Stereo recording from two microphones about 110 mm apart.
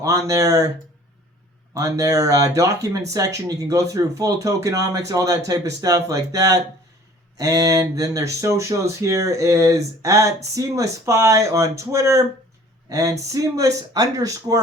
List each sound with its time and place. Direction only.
0.0 s speech: 30° right (ahead or behind)
1.7 s speech: 30° right (ahead or behind)